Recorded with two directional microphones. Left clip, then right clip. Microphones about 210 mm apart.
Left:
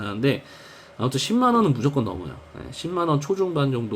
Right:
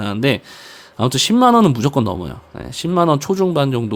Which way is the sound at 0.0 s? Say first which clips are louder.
Right 6 dB; 50° right (ahead or behind).